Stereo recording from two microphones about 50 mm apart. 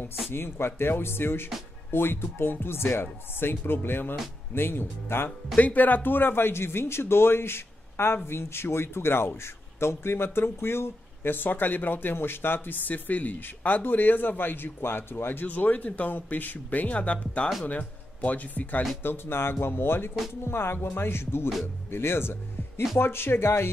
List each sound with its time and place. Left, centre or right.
0.3 s speech: left
5.6 s speech: left
15.4 s speech: left
19.0 s speech: left